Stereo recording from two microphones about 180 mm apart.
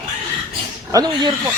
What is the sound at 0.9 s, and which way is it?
Speech, 20° right (ahead or behind).